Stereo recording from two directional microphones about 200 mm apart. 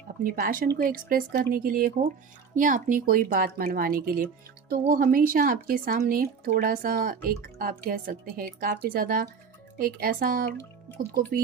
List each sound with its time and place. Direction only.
0.2 s speech: 45° right (ahead or behind)